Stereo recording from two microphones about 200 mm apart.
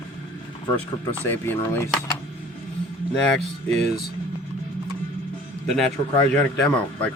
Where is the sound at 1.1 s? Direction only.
10° left (ahead or behind).